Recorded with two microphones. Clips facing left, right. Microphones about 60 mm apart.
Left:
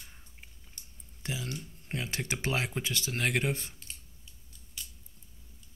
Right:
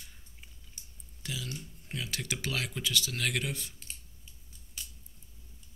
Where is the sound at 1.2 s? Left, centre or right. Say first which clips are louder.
Left 2 dB; left.